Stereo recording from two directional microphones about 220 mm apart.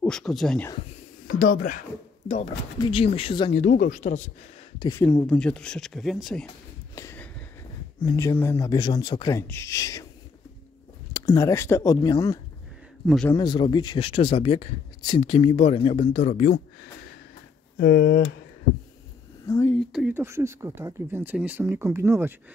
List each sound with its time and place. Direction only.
0.0 s speech: centre (ahead or behind)
1.2 s speech: 40° left (ahead or behind)
2.8 s speech: 25° left (ahead or behind)
3.6 s speech: 40° left (ahead or behind)
4.7 s speech: 15° left (ahead or behind)
5.1 s speech: 5° left (ahead or behind)
7.0 s a sound: 10° left (ahead or behind)
8.0 s speech: 15° left (ahead or behind)
11.1 s speech: 15° left (ahead or behind)
13.0 s a man's voice: centre (ahead or behind)
13.3 s speech: 20° left (ahead or behind)
17.7 s speech: 55° left (ahead or behind)
19.4 s speech: 10° left (ahead or behind)
19.9 s speech: 5° right (ahead or behind)